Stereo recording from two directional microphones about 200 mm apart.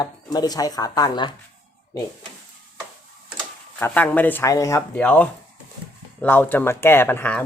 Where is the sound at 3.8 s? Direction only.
10° left (ahead or behind).